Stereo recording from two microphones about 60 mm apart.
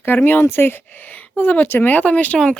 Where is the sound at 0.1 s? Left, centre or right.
Left.